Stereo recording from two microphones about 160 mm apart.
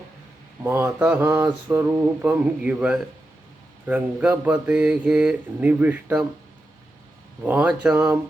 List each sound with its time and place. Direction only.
0.6 s speech: 15° right (ahead or behind)
7.4 s speech: 10° right (ahead or behind)